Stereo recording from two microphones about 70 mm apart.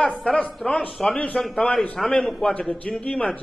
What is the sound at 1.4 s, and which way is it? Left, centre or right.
A man's voice, centre.